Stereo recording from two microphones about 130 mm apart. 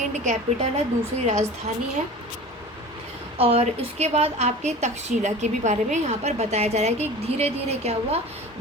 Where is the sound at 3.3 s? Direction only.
50° right (ahead or behind).